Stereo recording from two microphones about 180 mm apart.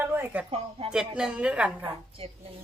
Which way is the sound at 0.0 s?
10° right (ahead or behind).